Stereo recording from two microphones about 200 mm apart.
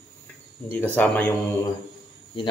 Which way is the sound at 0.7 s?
10° left (ahead or behind).